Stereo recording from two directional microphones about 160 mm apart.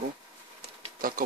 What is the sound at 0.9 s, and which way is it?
Speech, 65° right (ahead or behind).